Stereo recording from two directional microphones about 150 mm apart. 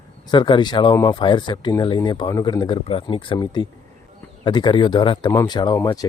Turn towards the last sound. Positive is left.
turn(degrees=25)  # may be behind; listen again after turning